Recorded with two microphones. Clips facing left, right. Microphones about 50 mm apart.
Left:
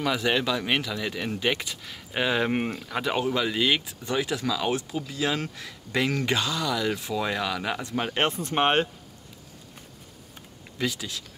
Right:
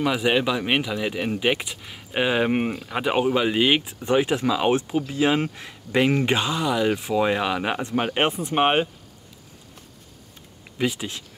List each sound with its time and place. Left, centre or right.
0.0 s speech: centre
10.8 s speech: right